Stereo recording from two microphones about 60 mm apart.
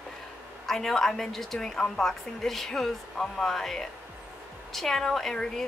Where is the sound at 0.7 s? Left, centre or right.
Centre.